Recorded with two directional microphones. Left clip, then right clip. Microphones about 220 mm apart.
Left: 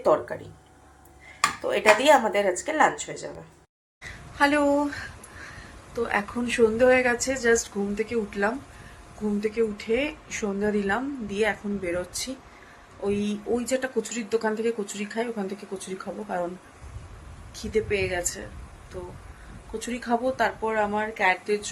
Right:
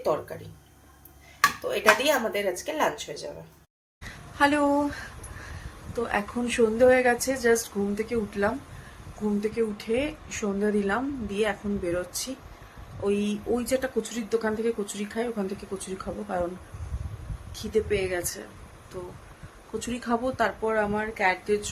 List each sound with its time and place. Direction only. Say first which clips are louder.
0.0 s speech: left 5 dB; 10° left (ahead or behind)
1.6 s speech: left 5 dB; centre (ahead or behind)
4.4 s a woman's voice: left 1 dB; 15° right (ahead or behind)
17.5 s a woman's voice: even; 15° right (ahead or behind)
19.8 s a woman's voice: left 2 dB; 20° right (ahead or behind)